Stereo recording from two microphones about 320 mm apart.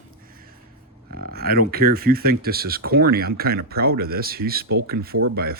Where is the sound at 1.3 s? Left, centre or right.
Right.